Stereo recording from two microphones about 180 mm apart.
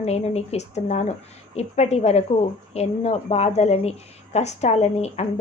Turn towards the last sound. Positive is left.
turn(degrees=35)  # may be behind; listen again after turning